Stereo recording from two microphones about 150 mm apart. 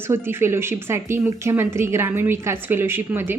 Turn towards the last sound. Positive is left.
turn(degrees=-15)  # may be behind; listen again after turning